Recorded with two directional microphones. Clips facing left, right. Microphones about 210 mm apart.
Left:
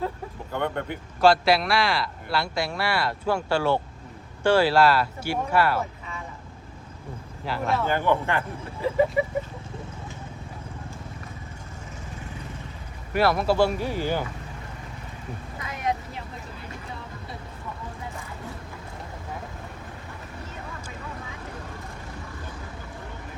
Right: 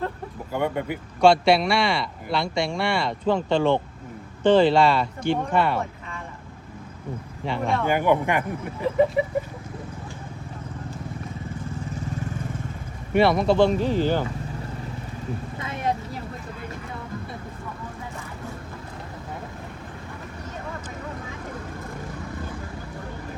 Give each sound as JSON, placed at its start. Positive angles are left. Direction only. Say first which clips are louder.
{"t": 0.5, "sound": "speech", "louder": "right 3 dB", "side_deg": -10}
{"t": 7.4, "sound": "speech", "louder": "right 1 dB", "side_deg": 0}
{"t": 7.9, "sound": "speech", "louder": "right 5 dB", "side_deg": -15}
{"t": 13.1, "sound": "speech", "louder": "right 3 dB", "side_deg": 0}
{"t": 15.5, "sound": "vehicle", "louder": "right 1 dB", "side_deg": -25}